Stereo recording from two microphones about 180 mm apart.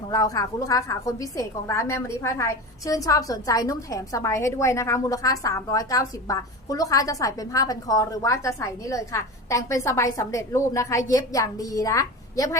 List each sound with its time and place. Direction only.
0.1 s a woman's voice: 20° left (ahead or behind)